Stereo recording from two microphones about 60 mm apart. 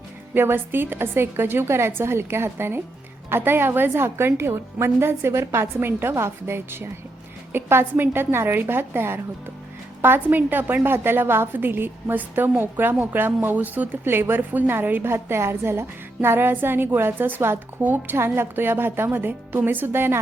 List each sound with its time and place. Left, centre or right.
0.3 s a woman's voice: right